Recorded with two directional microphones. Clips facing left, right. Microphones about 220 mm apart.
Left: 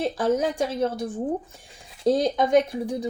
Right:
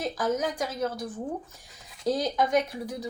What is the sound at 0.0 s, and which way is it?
A woman's voice, 30° left (ahead or behind).